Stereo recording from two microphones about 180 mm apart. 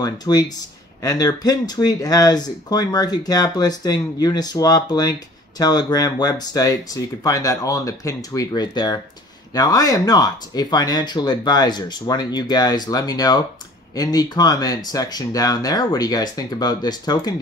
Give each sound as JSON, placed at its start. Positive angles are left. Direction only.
{"t": 0.0, "sound": "speech", "side_deg": 20}